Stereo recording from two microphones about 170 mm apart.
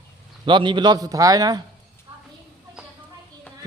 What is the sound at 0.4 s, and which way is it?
A man's voice, 30° right (ahead or behind).